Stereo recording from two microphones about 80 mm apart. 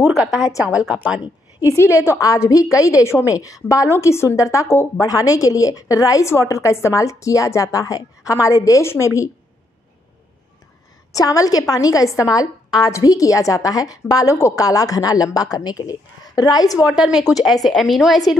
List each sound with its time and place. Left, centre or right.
0.1 s a woman's voice: centre
1.8 s a woman's voice: left
11.1 s a woman's voice: left
16.8 s a woman's voice: centre